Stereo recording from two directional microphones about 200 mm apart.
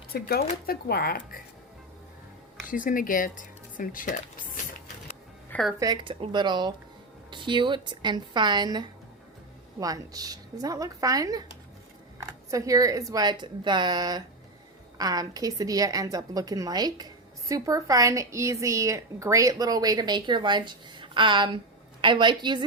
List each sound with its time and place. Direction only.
0.1 s speech: 50° left (ahead or behind)
2.6 s speech: 40° left (ahead or behind)
5.5 s music: 5° left (ahead or behind)
5.8 s a woman's voice: 20° right (ahead or behind)
12.5 s a woman's voice: 15° right (ahead or behind)